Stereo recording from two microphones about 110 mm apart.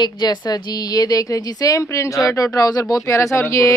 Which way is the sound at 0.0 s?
40° left (ahead or behind).